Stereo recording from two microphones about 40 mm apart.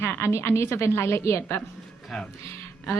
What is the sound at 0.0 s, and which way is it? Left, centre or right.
A woman's voice, left.